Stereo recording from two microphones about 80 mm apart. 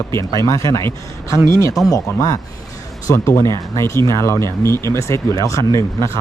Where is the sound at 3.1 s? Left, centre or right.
Left.